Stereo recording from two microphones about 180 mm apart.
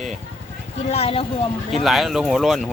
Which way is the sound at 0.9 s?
35° left (ahead or behind).